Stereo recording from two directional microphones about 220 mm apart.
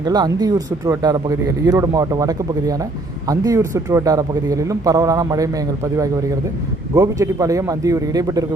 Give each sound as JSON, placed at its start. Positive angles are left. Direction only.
{"t": 0.0, "sound": "speech", "side_deg": -20}